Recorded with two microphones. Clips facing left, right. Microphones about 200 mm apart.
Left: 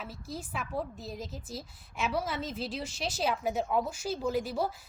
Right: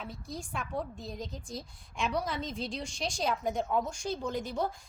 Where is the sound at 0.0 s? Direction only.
5° left (ahead or behind).